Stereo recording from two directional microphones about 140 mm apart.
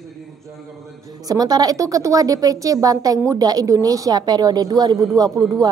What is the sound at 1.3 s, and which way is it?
A woman's voice, 30° right (ahead or behind).